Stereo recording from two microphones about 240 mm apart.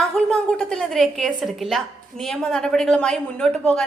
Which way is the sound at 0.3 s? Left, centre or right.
Centre.